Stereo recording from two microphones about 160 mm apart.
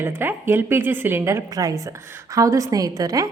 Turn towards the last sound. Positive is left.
turn(degrees=-20)  # may be behind; listen again after turning